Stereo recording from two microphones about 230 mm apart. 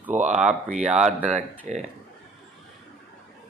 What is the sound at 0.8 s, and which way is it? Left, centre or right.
Speech, centre.